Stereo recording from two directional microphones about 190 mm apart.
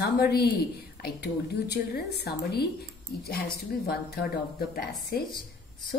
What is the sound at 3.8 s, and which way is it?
Speech, 55° left (ahead or behind).